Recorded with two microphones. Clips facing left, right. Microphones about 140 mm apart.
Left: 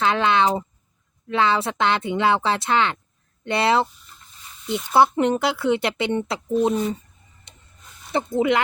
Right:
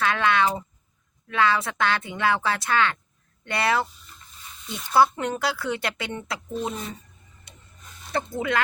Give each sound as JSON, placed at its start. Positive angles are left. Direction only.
{"t": 0.0, "sound": "speech", "side_deg": 25}
{"t": 4.9, "sound": "speech", "side_deg": 25}
{"t": 8.1, "sound": "speech", "side_deg": 20}